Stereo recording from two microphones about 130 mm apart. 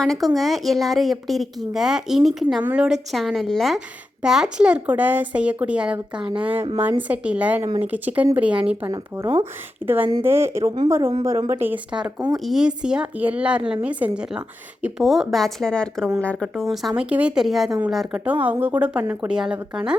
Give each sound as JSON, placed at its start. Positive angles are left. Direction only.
{"t": 0.0, "sound": "speech", "side_deg": 5}
{"t": 8.9, "sound": "speech", "side_deg": -25}
{"t": 12.5, "sound": "speech", "side_deg": -5}
{"t": 16.9, "sound": "speech", "side_deg": -10}
{"t": 18.4, "sound": "speech", "side_deg": -10}